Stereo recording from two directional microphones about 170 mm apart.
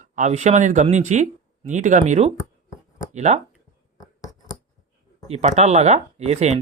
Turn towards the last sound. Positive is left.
turn(degrees=-40)  # may be behind; listen again after turning